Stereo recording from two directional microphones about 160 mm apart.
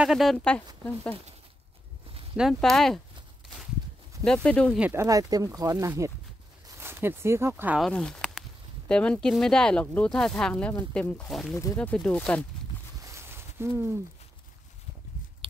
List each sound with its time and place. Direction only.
0.0 s speech: centre (ahead or behind)
2.3 s speech: centre (ahead or behind)
4.2 s speech: 5° left (ahead or behind)
4.7 s speech: 10° right (ahead or behind)
5.0 s speech: 20° right (ahead or behind)
7.8 s speech: 5° left (ahead or behind)
11.5 s speech: 15° left (ahead or behind)
13.0 s a sound: 15° right (ahead or behind)